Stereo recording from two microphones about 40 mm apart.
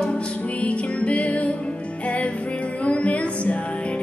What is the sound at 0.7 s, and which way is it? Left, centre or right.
Music, left.